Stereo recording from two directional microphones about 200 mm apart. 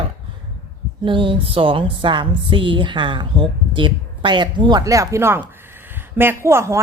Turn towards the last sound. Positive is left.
turn(degrees=-15)  # may be behind; listen again after turning